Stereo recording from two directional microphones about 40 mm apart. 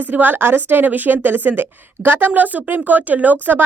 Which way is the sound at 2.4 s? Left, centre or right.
Right.